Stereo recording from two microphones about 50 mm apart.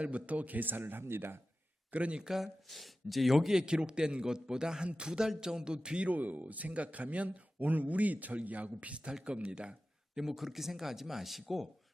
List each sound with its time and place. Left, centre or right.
0.0 s speech: right
1.9 s speech: right
2.2 s speech: centre
6.1 s speech: right
10.2 s speech: centre